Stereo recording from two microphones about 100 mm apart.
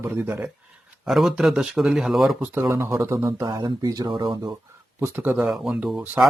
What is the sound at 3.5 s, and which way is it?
Speech, 40° right (ahead or behind).